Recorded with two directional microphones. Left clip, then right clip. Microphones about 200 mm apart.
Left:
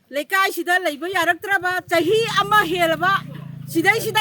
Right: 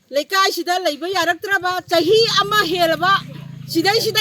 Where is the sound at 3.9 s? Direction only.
35° left (ahead or behind).